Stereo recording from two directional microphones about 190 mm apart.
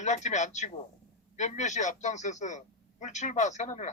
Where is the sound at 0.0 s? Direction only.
40° left (ahead or behind).